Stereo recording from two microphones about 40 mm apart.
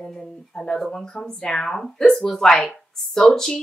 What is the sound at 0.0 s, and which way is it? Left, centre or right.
A woman's voice, centre.